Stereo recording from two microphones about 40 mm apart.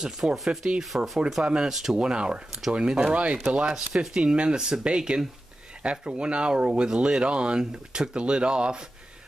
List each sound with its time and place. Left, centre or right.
0.0 s speech: centre
0.7 s speech: centre
1.4 s speech: right
1.7 s speech: centre
2.0 s speech: right
4.1 s speech: right